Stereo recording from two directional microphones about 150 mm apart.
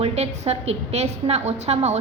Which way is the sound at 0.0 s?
45° right (ahead or behind).